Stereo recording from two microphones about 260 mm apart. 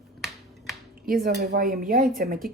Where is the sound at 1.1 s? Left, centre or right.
Right.